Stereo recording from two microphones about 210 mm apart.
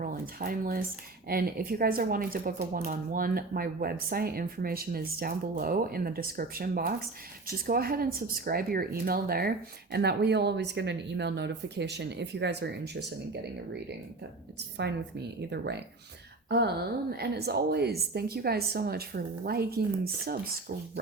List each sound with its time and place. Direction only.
0.0 s speech: 45° right (ahead or behind)
15.4 s speech: 55° right (ahead or behind)